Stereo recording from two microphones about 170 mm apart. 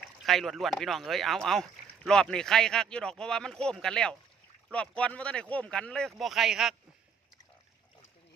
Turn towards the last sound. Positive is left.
turn(degrees=0)  # may be behind; listen again after turning